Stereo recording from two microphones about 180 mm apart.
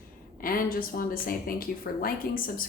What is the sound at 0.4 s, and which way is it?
A woman's voice, 50° left (ahead or behind).